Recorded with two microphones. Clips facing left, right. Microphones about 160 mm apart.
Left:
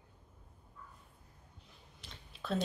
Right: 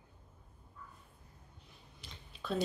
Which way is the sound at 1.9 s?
Centre (ahead or behind).